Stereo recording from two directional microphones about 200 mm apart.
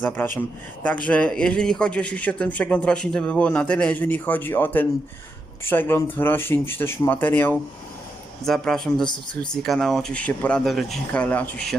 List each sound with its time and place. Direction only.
0.0 s speech: 10° left (ahead or behind)
9.0 s speech: 20° left (ahead or behind)
9.4 s speech: 5° left (ahead or behind)